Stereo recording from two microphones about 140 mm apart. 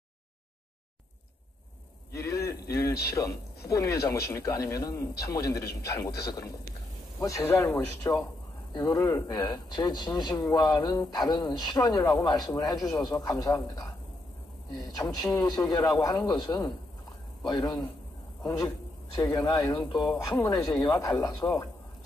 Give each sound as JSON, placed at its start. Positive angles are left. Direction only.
{"t": 2.1, "sound": "a man's voice", "side_deg": 20}
{"t": 15.0, "sound": "a man's voice", "side_deg": 25}
{"t": 21.4, "sound": "a man's voice", "side_deg": 20}